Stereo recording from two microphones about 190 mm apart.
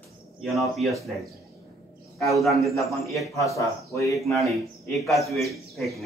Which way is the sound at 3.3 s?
15° left (ahead or behind).